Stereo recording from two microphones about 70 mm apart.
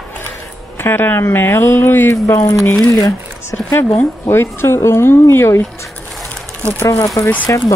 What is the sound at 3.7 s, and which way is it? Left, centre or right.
Speech, left.